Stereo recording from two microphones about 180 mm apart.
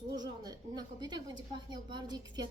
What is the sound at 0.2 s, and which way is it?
A woman's voice, 25° right (ahead or behind).